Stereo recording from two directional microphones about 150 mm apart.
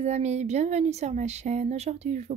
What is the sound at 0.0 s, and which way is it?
A woman's voice, 50° right (ahead or behind).